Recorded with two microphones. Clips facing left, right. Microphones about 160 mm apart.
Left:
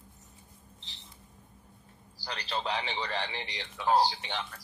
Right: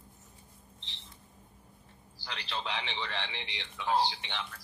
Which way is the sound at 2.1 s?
40° left (ahead or behind).